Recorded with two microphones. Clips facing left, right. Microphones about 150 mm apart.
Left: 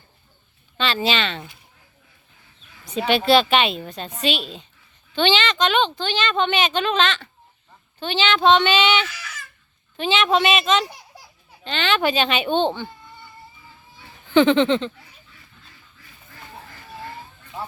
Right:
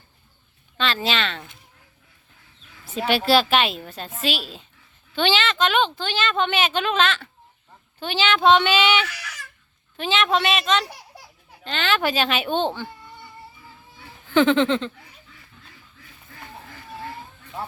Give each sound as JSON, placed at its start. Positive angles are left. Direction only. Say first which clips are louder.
{"t": 0.8, "sound": "a woman's voice", "louder": "left 2 dB", "side_deg": 0}
{"t": 2.8, "sound": "a woman's voice", "louder": "left 2 dB", "side_deg": -5}
{"t": 9.1, "sound": "a sound", "louder": "left 1 dB", "side_deg": -70}
{"t": 10.0, "sound": "a woman's voice", "louder": "left 2 dB", "side_deg": 0}
{"t": 14.3, "sound": "a woman's voice", "louder": "left 2 dB", "side_deg": 0}